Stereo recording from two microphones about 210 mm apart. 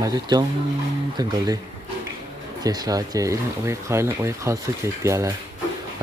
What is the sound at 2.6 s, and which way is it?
Speech, 20° right (ahead or behind).